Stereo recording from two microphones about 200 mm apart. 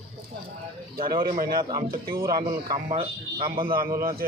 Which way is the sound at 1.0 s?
45° right (ahead or behind).